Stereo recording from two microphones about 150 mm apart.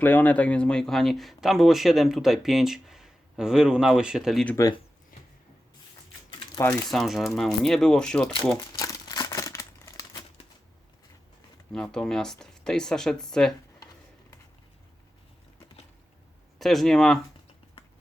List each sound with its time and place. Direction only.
0.0 s speech: 10° left (ahead or behind)
6.8 s speech: centre (ahead or behind)
8.5 s crumpling: 25° left (ahead or behind)
11.7 s speech: 5° left (ahead or behind)
16.6 s speech: centre (ahead or behind)